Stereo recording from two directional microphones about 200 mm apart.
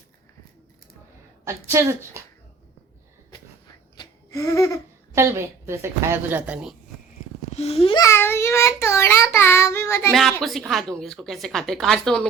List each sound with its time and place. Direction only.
1.5 s speech: 15° right (ahead or behind)
3.9 s laughter: 15° left (ahead or behind)
5.1 s speech: 15° right (ahead or behind)
7.5 s a child's voice: 30° left (ahead or behind)
8.0 s child singing: 10° left (ahead or behind)
10.1 s a woman's voice: centre (ahead or behind)